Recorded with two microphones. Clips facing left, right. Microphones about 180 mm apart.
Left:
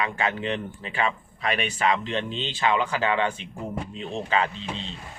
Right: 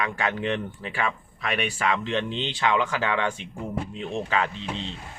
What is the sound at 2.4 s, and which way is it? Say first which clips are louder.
Speech: left 2 dB; 15° left (ahead or behind).